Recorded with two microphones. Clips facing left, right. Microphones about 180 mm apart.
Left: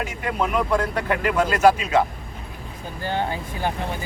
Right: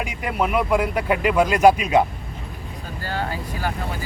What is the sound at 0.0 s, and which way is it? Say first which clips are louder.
Speech: right 1 dB; 10° right (ahead or behind).